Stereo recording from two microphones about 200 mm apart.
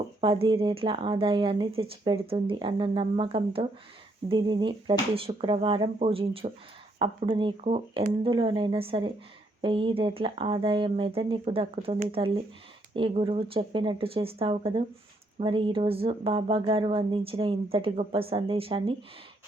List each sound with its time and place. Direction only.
0.2 s speech: 25° right (ahead or behind)